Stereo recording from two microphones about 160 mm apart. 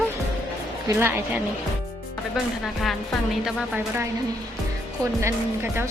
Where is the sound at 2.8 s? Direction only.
Centre (ahead or behind).